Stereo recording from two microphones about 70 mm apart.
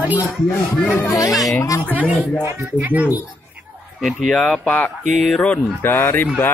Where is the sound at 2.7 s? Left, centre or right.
Right.